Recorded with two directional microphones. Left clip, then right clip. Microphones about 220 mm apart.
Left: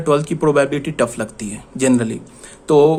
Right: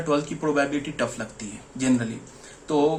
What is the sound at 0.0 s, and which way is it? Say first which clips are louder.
Speech: left 9 dB; 50° left (ahead or behind).